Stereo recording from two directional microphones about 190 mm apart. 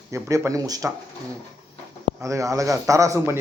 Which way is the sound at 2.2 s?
15° right (ahead or behind).